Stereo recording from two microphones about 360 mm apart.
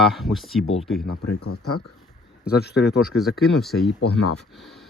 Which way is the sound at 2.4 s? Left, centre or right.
Left.